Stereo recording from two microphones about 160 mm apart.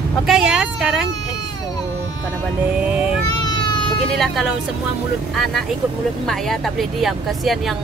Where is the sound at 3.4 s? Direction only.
30° left (ahead or behind).